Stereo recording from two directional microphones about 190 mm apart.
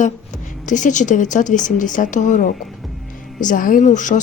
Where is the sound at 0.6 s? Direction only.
40° left (ahead or behind).